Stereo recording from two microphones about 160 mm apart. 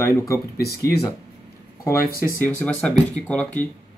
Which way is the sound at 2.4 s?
10° left (ahead or behind).